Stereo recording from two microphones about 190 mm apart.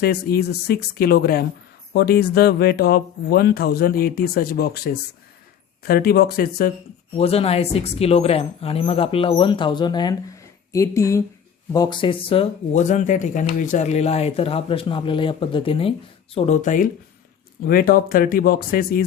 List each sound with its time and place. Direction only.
0.0 s speech: 55° left (ahead or behind)
7.2 s speech: 30° left (ahead or behind)
16.3 s speech: 40° left (ahead or behind)